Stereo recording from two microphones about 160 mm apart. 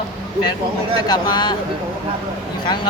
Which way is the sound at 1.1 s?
25° left (ahead or behind).